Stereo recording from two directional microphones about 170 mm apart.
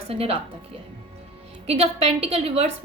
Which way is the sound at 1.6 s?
35° right (ahead or behind).